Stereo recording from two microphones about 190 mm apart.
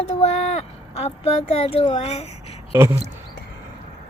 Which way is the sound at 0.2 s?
35° left (ahead or behind).